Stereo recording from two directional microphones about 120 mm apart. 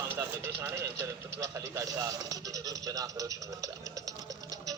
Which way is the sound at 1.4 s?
25° right (ahead or behind).